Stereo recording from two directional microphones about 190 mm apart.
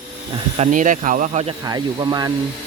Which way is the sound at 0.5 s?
40° right (ahead or behind).